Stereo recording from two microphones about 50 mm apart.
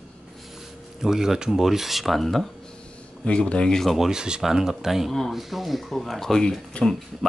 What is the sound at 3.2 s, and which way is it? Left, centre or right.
Speech, centre.